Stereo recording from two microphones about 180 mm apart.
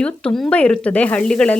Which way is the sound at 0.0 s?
5° left (ahead or behind).